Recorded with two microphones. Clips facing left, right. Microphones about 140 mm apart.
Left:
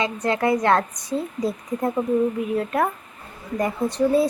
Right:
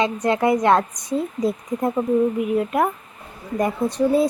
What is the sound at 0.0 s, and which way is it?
Speech, 20° right (ahead or behind).